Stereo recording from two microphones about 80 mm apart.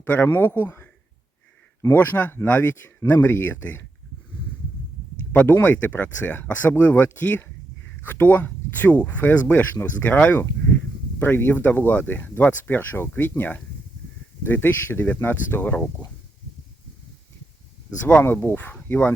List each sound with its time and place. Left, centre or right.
0.0 s speech: left
1.9 s speech: left
5.3 s speech: centre
18.0 s speech: left